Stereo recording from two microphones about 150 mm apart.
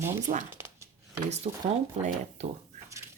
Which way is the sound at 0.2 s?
55° right (ahead or behind).